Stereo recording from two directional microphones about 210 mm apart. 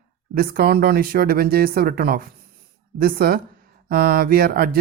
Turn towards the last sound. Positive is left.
turn(degrees=-45)  # may be behind; listen again after turning